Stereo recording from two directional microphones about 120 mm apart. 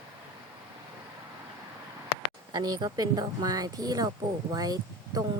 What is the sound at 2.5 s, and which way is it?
Speech, 35° right (ahead or behind).